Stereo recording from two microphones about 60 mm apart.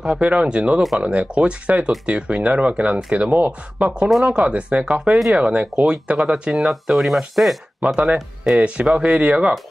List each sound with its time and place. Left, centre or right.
0.0 s speech: centre
4.1 s speech: centre
4.4 s speech: centre
6.5 s speech: centre
7.8 s speech: right